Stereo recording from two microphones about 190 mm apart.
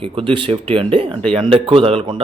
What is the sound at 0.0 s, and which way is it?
Speech, 30° right (ahead or behind).